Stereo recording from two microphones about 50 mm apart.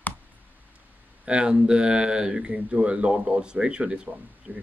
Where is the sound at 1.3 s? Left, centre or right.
Centre.